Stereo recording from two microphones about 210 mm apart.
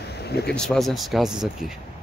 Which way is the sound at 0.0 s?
50° left (ahead or behind).